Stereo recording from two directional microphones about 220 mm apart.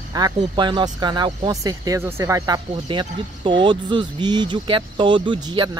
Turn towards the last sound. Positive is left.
turn(degrees=-20)  # may be behind; listen again after turning